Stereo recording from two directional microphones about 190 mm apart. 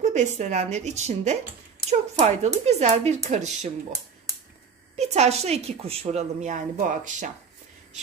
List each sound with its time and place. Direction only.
0.0 s a woman's voice: 40° right (ahead or behind)
4.9 s a woman's voice: 35° right (ahead or behind)